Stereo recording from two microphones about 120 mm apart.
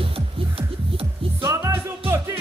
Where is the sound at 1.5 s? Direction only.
20° right (ahead or behind).